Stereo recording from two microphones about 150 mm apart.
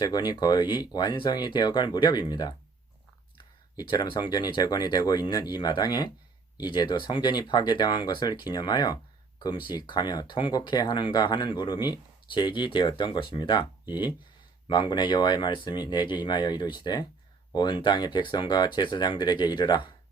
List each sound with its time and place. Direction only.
0.0 s speech: 25° left (ahead or behind)
14.7 s speech: 30° left (ahead or behind)